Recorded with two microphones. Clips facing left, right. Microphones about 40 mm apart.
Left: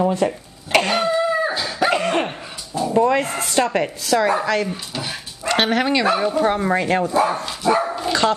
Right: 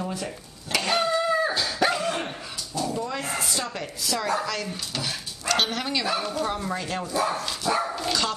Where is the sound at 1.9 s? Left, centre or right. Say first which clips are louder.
Left 8 dB; left.